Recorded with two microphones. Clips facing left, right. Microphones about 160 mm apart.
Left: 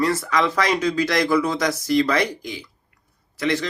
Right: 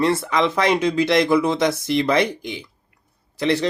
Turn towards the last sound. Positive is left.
turn(degrees=-30)  # may be behind; listen again after turning